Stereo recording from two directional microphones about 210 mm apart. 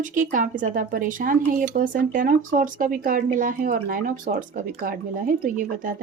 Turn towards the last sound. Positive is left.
turn(degrees=-40)  # may be behind; listen again after turning